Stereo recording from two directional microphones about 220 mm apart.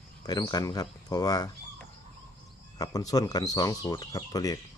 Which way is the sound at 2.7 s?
15° left (ahead or behind).